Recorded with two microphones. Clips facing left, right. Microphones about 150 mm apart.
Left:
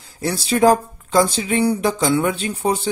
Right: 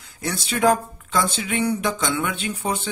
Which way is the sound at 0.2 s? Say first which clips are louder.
Left 5 dB; 35° left (ahead or behind).